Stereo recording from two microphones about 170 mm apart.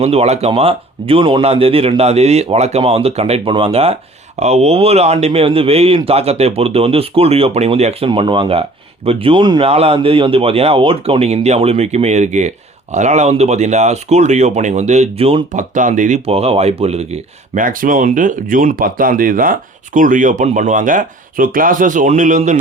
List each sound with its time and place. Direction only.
0.0 s speech: 40° right (ahead or behind)
15.5 s speech: 45° right (ahead or behind)
17.5 s speech: 55° right (ahead or behind)